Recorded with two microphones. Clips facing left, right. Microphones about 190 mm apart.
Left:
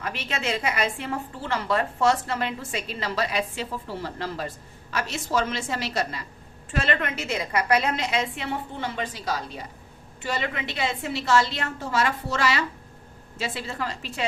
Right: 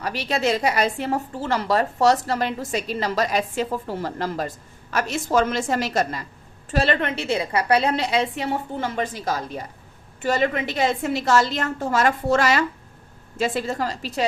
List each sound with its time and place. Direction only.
0.0 s a woman's voice: 35° right (ahead or behind)
6.7 s a woman's voice: 35° right (ahead or behind)